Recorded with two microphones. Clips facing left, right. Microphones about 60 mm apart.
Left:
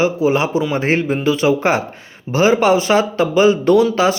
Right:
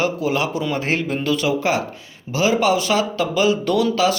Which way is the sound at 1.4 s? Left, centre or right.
Left.